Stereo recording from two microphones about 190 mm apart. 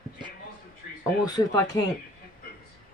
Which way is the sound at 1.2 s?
20° left (ahead or behind).